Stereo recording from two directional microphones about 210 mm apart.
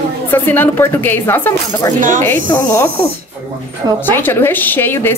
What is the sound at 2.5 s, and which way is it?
Speech, 15° left (ahead or behind).